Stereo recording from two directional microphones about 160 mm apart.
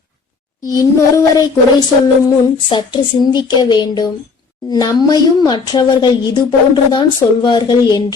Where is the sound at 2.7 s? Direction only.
25° left (ahead or behind).